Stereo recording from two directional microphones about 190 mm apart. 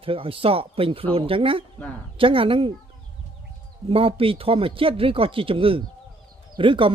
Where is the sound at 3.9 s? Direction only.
30° right (ahead or behind).